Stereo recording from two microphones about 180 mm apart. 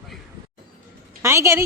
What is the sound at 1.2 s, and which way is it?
Speech, 15° right (ahead or behind).